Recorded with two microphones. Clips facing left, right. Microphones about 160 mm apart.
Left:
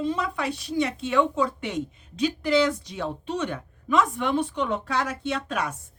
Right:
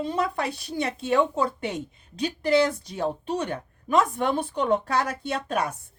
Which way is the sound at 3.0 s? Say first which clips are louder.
Right 4 dB; 40° right (ahead or behind).